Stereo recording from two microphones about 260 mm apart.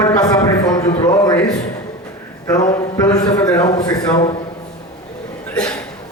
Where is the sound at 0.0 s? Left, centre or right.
Centre.